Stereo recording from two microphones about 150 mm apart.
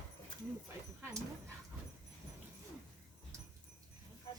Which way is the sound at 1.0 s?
20° right (ahead or behind).